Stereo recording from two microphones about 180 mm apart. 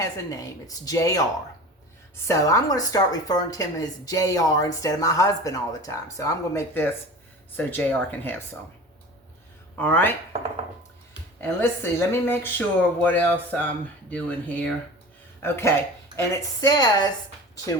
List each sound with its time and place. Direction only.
0.0 s a woman's voice: 20° left (ahead or behind)
9.7 s speech: 10° left (ahead or behind)
11.3 s a woman's voice: 15° left (ahead or behind)